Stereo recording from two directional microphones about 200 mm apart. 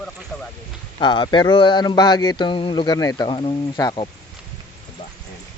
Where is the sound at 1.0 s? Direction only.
25° left (ahead or behind).